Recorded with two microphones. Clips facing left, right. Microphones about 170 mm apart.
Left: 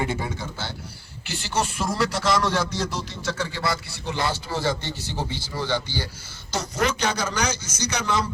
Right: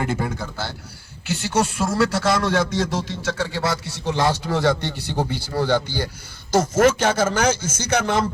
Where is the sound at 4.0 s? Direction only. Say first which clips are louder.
Right 8 dB; 70° right (ahead or behind).